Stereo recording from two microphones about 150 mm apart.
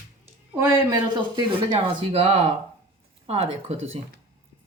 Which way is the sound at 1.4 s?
35° right (ahead or behind).